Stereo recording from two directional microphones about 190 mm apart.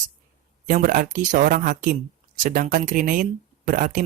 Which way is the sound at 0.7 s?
45° right (ahead or behind).